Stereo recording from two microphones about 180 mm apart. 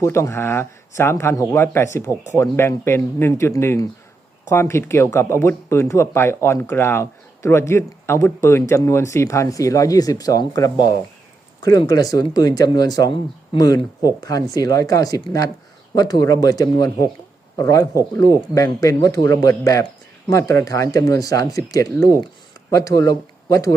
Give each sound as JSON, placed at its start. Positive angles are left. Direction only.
{"t": 0.0, "sound": "speech", "side_deg": 15}